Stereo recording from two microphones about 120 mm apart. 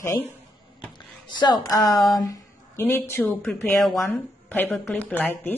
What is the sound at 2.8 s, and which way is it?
A woman's voice, 15° left (ahead or behind).